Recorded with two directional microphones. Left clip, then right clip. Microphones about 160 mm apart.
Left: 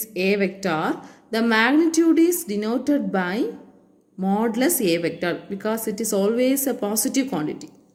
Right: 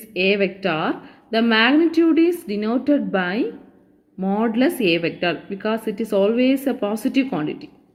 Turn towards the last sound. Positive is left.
turn(degrees=-35)  # may be behind; listen again after turning